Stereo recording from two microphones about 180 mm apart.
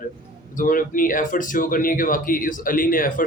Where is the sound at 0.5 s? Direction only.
50° left (ahead or behind).